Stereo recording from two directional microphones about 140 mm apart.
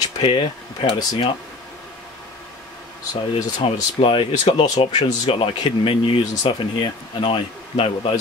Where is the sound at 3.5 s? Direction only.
40° left (ahead or behind).